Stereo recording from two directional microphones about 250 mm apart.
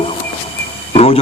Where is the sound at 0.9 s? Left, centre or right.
Left.